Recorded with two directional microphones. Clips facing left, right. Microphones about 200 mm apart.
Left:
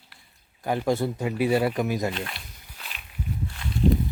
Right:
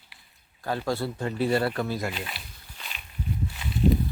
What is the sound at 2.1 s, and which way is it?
Walk, 5° right (ahead or behind).